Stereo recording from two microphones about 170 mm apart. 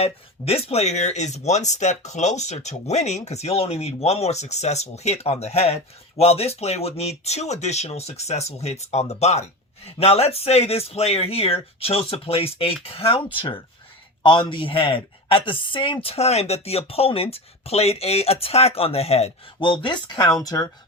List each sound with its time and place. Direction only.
0.0 s speech: 35° left (ahead or behind); by 20.7 s 20° left (ahead or behind)